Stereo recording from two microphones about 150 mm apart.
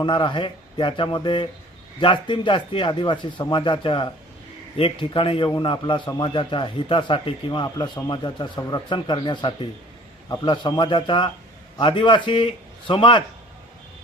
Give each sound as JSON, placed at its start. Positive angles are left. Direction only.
{"t": 0.0, "sound": "a man's voice", "side_deg": 30}